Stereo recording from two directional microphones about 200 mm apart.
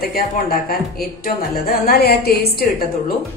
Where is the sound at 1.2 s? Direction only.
45° left (ahead or behind).